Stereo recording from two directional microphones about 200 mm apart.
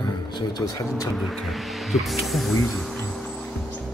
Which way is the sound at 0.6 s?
15° left (ahead or behind).